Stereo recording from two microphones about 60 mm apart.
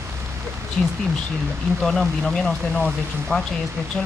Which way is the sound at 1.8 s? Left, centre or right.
Centre.